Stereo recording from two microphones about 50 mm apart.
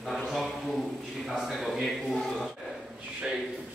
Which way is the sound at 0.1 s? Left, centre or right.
Centre.